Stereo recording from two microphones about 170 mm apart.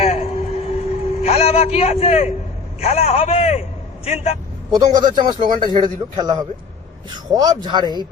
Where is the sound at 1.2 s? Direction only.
40° left (ahead or behind).